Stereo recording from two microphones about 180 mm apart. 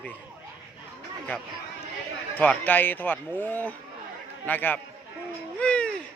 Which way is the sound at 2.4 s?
10° left (ahead or behind).